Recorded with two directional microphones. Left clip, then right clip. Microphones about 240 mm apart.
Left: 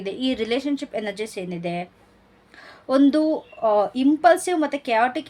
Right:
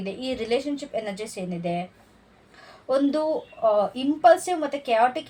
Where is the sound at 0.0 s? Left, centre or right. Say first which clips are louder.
Left 4 dB; left.